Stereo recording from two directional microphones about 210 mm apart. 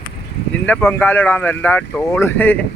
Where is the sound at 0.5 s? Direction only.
5° left (ahead or behind).